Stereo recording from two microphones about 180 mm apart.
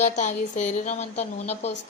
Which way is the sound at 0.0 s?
40° left (ahead or behind).